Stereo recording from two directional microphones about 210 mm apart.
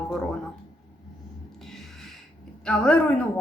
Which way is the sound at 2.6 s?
5° left (ahead or behind).